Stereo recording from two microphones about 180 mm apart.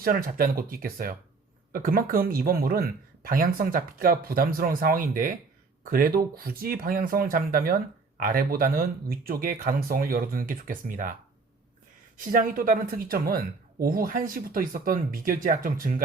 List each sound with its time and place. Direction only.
0.0 s speech: 55° right (ahead or behind)
12.1 s speech: 50° right (ahead or behind)